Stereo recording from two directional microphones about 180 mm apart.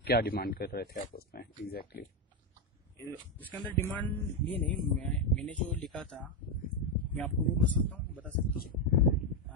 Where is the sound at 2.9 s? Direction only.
10° left (ahead or behind).